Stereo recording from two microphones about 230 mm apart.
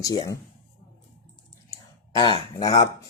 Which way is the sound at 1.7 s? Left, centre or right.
Centre.